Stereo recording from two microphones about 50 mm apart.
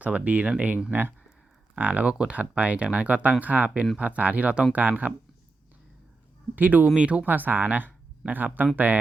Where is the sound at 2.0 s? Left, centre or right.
Centre.